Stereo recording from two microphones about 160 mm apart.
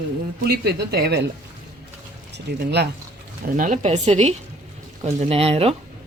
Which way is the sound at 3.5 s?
50° right (ahead or behind).